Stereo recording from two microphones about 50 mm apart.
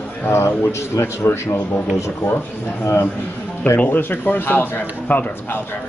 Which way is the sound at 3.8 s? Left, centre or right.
Left.